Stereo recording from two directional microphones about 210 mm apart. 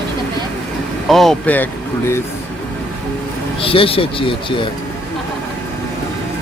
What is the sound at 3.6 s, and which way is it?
Speech, 25° left (ahead or behind).